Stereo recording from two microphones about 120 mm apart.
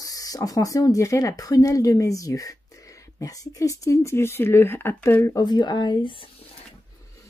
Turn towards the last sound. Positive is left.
turn(degrees=45)  # may be behind; listen again after turning